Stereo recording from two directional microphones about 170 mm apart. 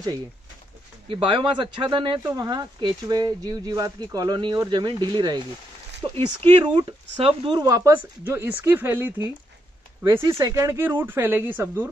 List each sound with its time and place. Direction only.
1.0 s speech: 30° right (ahead or behind)
6.1 s speech: 30° right (ahead or behind); by 11.9 s 10° right (ahead or behind)